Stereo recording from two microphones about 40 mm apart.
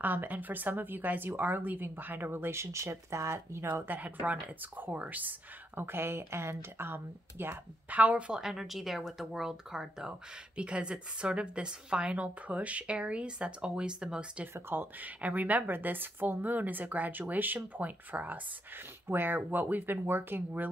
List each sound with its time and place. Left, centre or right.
0.0 s speech: right
3.3 s speech: right
3.9 s speech: right
4.9 s a woman's voice: right
5.8 s speech: right
7.9 s a woman's voice: right
8.3 s speech: centre
10.5 s a woman's voice: right
14.7 s speech: right
18.8 s speech: right